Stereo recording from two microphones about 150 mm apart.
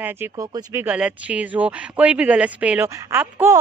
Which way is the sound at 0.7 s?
10° right (ahead or behind).